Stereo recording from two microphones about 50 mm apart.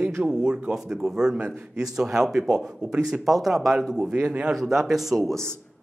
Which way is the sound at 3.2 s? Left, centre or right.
Centre.